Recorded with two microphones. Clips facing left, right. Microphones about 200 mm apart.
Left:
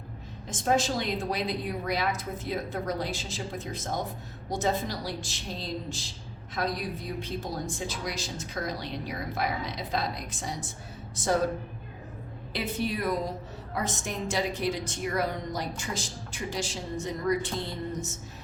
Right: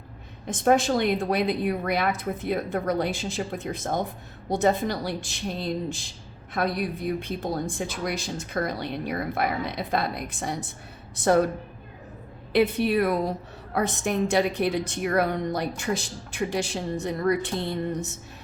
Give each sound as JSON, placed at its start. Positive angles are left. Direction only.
{"t": 0.4, "sound": "a woman's voice", "side_deg": -60}
{"t": 12.5, "sound": "a woman's voice", "side_deg": -65}